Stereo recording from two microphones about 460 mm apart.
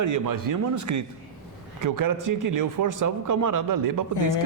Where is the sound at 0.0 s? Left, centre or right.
Right.